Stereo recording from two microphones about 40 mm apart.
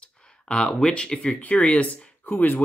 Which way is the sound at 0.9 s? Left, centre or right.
Left.